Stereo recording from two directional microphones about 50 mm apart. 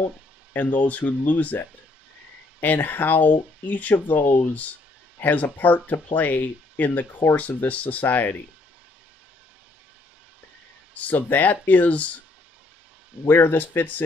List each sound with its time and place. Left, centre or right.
0.5 s speech: left
2.6 s speech: left
11.0 s speech: left
13.3 s speech: left